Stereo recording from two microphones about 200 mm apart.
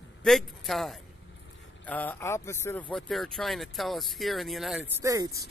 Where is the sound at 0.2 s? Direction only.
Centre (ahead or behind); by 5.4 s 15° right (ahead or behind).